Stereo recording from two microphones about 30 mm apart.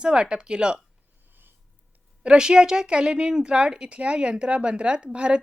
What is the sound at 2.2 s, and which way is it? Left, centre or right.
A woman's voice, right.